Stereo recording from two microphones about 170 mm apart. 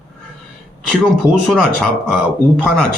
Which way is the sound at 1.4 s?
5° left (ahead or behind).